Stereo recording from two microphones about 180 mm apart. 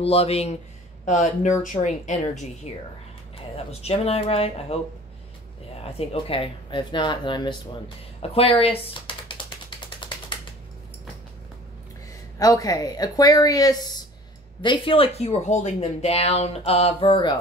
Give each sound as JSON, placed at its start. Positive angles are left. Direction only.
{"t": 0.0, "sound": "speech", "side_deg": 35}
{"t": 5.8, "sound": "speech", "side_deg": 35}
{"t": 8.2, "sound": "typing", "side_deg": 35}
{"t": 12.4, "sound": "speech", "side_deg": 20}